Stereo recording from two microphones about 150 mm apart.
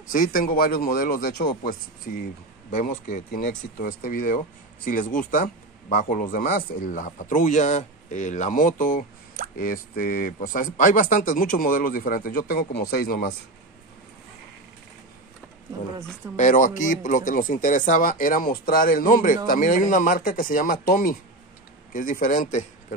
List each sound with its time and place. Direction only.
0.1 s speech: 70° left (ahead or behind); by 13.3 s 90° left
16.3 s speech: 55° left (ahead or behind)